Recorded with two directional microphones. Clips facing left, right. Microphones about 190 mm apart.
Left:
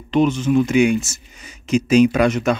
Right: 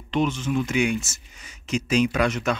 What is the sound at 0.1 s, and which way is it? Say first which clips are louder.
Speech: left 7 dB; 15° left (ahead or behind).